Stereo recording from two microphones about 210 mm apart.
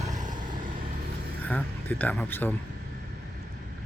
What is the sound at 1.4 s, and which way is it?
Speech, 5° left (ahead or behind).